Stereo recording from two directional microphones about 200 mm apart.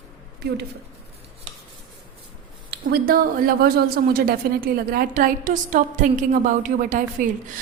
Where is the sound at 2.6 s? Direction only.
50° right (ahead or behind).